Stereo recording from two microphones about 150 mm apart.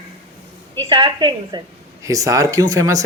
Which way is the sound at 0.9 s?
35° right (ahead or behind).